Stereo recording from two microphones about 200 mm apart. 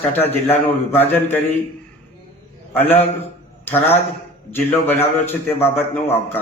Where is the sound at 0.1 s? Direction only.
10° left (ahead or behind).